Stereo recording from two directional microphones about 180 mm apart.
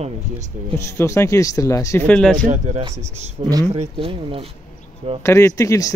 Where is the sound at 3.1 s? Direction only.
40° right (ahead or behind).